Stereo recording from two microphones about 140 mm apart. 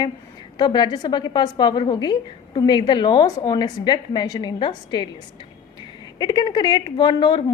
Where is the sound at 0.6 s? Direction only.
30° left (ahead or behind).